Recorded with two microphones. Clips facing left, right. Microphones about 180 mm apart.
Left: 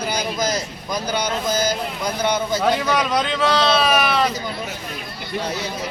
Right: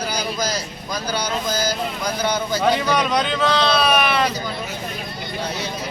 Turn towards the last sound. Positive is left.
turn(degrees=0)  # may be behind; listen again after turning